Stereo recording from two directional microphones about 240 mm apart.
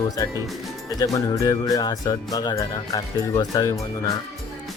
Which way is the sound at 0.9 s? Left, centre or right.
Centre.